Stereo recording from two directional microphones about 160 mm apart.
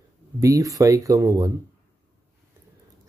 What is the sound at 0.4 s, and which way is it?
Speech, 20° right (ahead or behind).